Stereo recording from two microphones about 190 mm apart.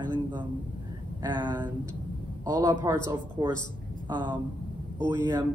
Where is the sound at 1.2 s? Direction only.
25° right (ahead or behind).